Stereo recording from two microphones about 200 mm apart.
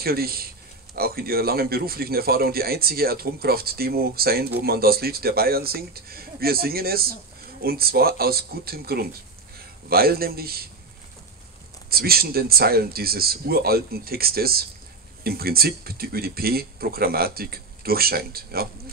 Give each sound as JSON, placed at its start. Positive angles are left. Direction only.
{"t": 0.0, "sound": "speech", "side_deg": -50}
{"t": 11.9, "sound": "speech", "side_deg": -50}